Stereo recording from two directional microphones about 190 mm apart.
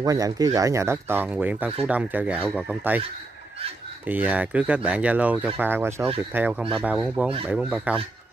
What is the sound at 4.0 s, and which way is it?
Speech, 10° right (ahead or behind).